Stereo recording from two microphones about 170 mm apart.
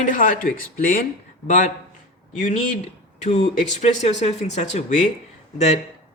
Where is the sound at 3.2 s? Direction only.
40° left (ahead or behind).